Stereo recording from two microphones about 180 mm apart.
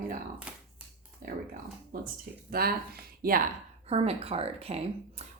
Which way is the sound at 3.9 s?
35° right (ahead or behind).